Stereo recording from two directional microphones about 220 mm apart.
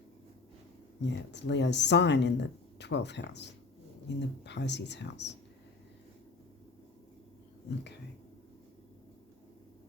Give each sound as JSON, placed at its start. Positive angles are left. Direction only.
{"t": 1.0, "sound": "speech", "side_deg": 50}